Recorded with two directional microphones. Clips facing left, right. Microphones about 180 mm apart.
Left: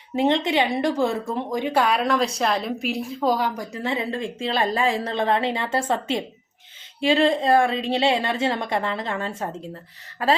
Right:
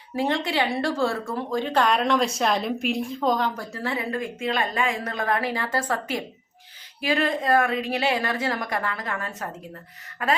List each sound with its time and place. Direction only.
0.2 s speech: 20° left (ahead or behind)